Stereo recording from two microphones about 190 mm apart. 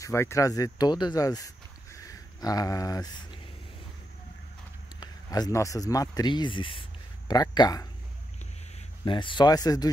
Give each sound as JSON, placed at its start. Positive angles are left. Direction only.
{"t": 0.0, "sound": "speech", "side_deg": 15}
{"t": 5.0, "sound": "speech", "side_deg": 20}
{"t": 9.0, "sound": "speech", "side_deg": 25}